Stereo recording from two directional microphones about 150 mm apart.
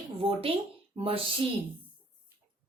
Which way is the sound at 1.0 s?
40° right (ahead or behind).